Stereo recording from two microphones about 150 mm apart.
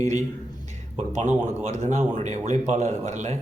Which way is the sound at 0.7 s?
50° right (ahead or behind).